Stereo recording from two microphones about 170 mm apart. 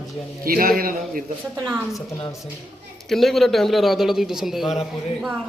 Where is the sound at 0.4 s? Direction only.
55° right (ahead or behind).